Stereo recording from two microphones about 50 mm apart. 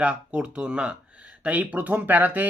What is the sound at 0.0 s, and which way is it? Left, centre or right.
Speech, right.